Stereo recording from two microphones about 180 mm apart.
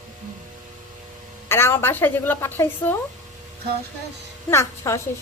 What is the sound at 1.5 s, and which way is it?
Speech, 15° left (ahead or behind).